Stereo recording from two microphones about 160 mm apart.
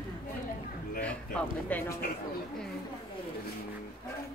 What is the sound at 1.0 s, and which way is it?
Speech, 5° left (ahead or behind).